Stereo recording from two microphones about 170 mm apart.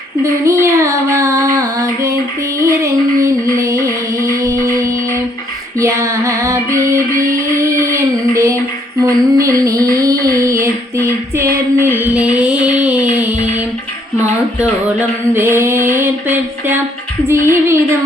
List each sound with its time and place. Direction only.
0.2 s child singing: 15° right (ahead or behind)
2.6 s music: 15° right (ahead or behind)
7.6 s a sound: 15° right (ahead or behind)
15.3 s mantra: 15° right (ahead or behind)
17.2 s music: 15° right (ahead or behind)